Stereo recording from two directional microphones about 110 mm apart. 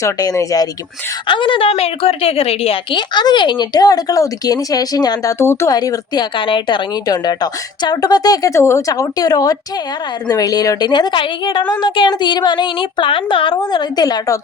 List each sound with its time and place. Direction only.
0.0 s a woman's voice: 30° left (ahead or behind)
1.3 s speech: 50° left (ahead or behind)
1.7 s a woman's voice: 65° left (ahead or behind)
2.9 s a woman's voice: 45° left (ahead or behind)
5.4 s speech: 25° left (ahead or behind)
5.7 s a woman's voice: 35° left (ahead or behind)